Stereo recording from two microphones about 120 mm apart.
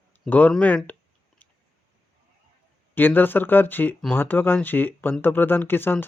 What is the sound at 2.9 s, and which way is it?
Speech, 15° left (ahead or behind).